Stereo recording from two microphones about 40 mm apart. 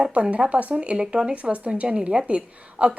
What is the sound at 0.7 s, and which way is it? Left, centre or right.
A woman's voice, right.